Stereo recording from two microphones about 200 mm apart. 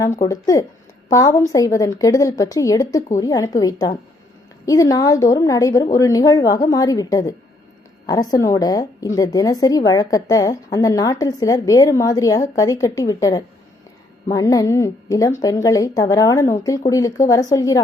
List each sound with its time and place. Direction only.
0.0 s a woman's voice: 15° left (ahead or behind)